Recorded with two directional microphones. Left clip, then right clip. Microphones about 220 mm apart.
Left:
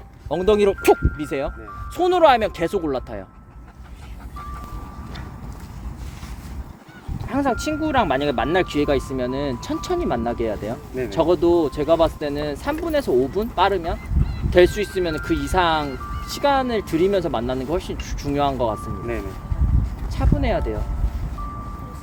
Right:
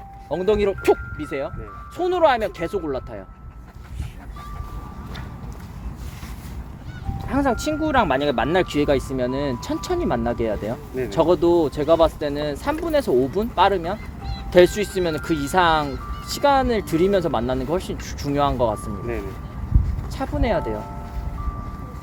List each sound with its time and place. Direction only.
0.3 s speech: 40° left (ahead or behind)
7.3 s speech: 25° right (ahead or behind)
20.1 s speech: 25° right (ahead or behind)